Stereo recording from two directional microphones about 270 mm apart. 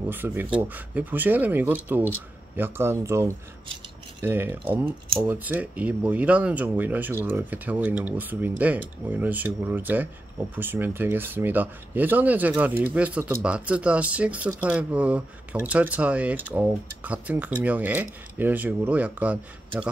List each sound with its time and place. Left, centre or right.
0.1 s speech: centre